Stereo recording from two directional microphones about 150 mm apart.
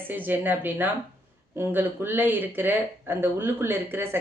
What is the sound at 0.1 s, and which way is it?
Speech, 10° right (ahead or behind).